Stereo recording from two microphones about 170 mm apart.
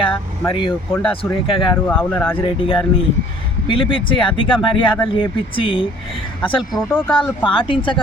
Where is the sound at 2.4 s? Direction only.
30° left (ahead or behind).